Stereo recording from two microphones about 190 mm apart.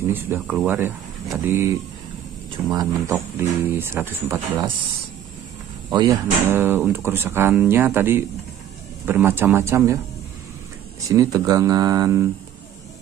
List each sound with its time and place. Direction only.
0.1 s speech: 10° right (ahead or behind)
5.9 s speech: 20° right (ahead or behind)
6.5 s speech: 10° right (ahead or behind)
11.1 s speech: 15° right (ahead or behind)